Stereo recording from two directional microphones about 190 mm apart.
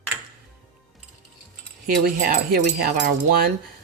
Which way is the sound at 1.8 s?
50° right (ahead or behind).